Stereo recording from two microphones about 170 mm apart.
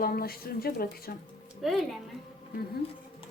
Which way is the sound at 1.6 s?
Centre (ahead or behind).